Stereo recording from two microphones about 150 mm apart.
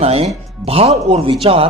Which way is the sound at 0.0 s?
40° right (ahead or behind).